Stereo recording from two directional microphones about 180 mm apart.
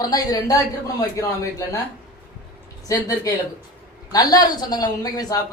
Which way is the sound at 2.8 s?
20° left (ahead or behind).